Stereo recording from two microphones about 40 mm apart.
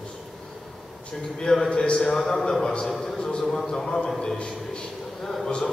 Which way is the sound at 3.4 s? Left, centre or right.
Centre.